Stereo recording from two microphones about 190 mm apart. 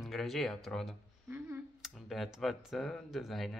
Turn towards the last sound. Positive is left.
turn(degrees=0)  # may be behind; listen again after turning